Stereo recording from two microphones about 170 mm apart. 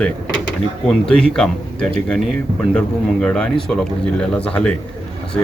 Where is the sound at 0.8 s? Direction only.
5° left (ahead or behind).